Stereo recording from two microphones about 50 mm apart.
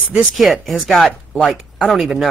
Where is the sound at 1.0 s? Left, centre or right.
Centre.